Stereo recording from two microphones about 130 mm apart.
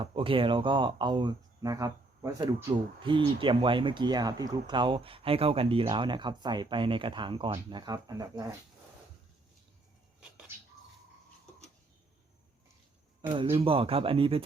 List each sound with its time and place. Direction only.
0.0 s speech: 45° right (ahead or behind)
3.0 s speech: 40° right (ahead or behind)
13.2 s speech: 40° right (ahead or behind)